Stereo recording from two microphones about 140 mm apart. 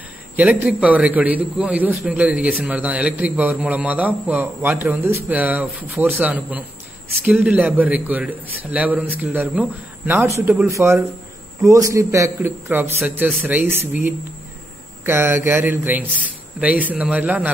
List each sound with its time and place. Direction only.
0.4 s a man's voice: 10° right (ahead or behind)